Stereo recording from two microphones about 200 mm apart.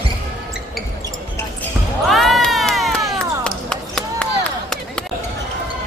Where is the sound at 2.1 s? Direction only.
Centre (ahead or behind).